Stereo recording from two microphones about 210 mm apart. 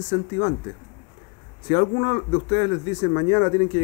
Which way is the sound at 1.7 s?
25° left (ahead or behind).